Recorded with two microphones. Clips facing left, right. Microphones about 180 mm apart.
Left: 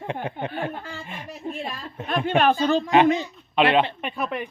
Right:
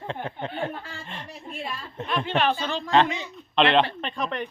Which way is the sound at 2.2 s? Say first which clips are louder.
Left 7 dB; 50° left (ahead or behind).